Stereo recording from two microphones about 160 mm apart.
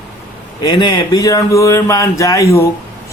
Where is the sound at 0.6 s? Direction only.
25° left (ahead or behind).